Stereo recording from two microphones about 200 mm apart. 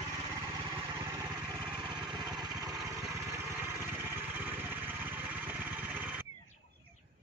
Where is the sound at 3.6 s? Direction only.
10° right (ahead or behind).